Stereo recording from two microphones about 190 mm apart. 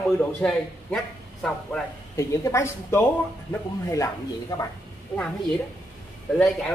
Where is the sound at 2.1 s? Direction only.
15° left (ahead or behind).